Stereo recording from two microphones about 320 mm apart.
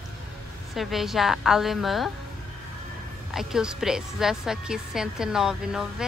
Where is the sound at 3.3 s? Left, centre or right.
Centre.